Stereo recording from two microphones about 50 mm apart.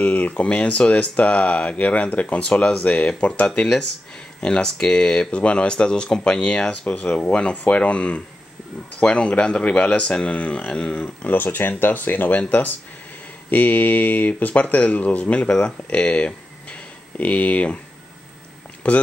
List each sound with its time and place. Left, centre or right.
0.0 s speech: left
11.2 s speech: left
18.8 s speech: left